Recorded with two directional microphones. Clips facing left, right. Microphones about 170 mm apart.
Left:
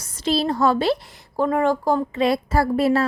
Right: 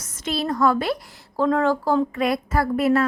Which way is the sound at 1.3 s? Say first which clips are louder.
Even; 15° left (ahead or behind).